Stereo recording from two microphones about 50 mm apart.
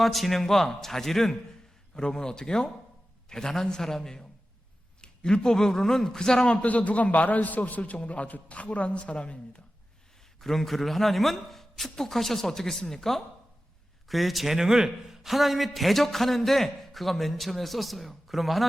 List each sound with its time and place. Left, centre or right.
0.0 s a man's voice: centre
6.5 s a man's voice: left
10.4 s a man's voice: centre